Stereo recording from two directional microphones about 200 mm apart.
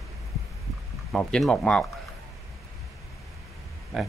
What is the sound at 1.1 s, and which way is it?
Speech, centre (ahead or behind).